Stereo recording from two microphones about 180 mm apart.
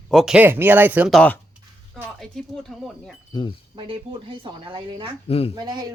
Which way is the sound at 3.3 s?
25° left (ahead or behind).